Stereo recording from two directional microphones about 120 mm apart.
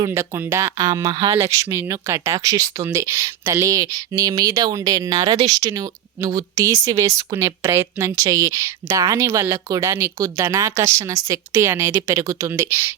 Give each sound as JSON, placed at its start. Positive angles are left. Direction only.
{"t": 0.1, "sound": "speech", "side_deg": -25}
{"t": 1.4, "sound": "speech", "side_deg": -25}